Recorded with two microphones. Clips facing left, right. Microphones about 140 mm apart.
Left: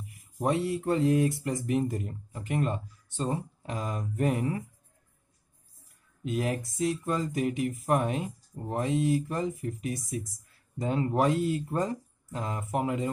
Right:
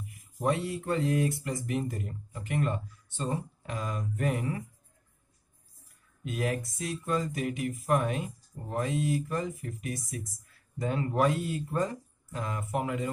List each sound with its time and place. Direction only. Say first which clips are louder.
0.4 s speech: left 2 dB; 35° left (ahead or behind)
0.7 s speech: left 4 dB; 25° left (ahead or behind)
6.3 s speech: left 1 dB; 35° left (ahead or behind)